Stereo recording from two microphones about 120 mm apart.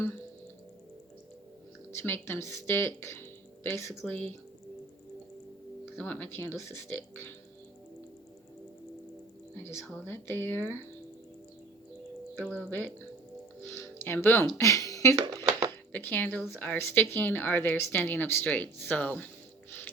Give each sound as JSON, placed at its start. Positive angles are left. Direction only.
{"t": 1.9, "sound": "speech", "side_deg": 20}
{"t": 4.0, "sound": "a woman's voice", "side_deg": 10}
{"t": 6.0, "sound": "a woman's voice", "side_deg": 15}
{"t": 9.6, "sound": "speech", "side_deg": 20}
{"t": 12.5, "sound": "a woman's voice", "side_deg": 15}
{"t": 15.9, "sound": "a woman's voice", "side_deg": 15}